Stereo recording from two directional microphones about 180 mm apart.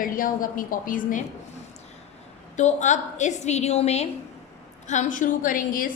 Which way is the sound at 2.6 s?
40° left (ahead or behind).